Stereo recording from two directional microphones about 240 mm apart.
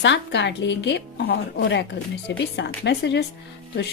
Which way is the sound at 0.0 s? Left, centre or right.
Left.